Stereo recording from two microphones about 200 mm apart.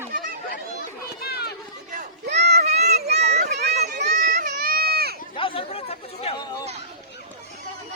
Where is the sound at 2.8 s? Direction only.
55° right (ahead or behind).